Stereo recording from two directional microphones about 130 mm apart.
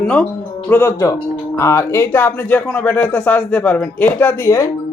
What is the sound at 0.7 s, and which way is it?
Speech, 20° left (ahead or behind).